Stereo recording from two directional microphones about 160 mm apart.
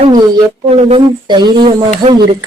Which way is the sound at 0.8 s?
40° right (ahead or behind).